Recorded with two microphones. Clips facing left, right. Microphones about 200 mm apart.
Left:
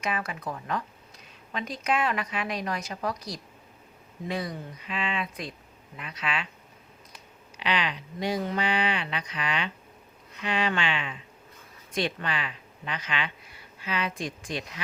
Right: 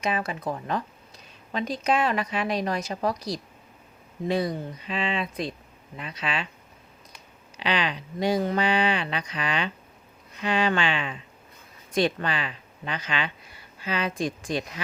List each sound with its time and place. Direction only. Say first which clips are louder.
0.0 s speech: right 4 dB; 30° right (ahead or behind)
7.6 s speech: right 2 dB; 35° right (ahead or behind)